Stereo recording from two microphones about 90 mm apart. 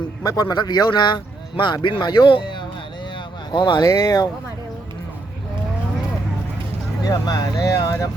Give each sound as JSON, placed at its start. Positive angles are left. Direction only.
{"t": 0.2, "sound": "speech", "side_deg": 45}
{"t": 7.1, "sound": "speech", "side_deg": 45}